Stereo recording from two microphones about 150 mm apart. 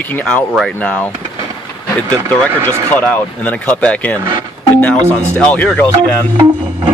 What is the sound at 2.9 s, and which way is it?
Speech, 10° left (ahead or behind).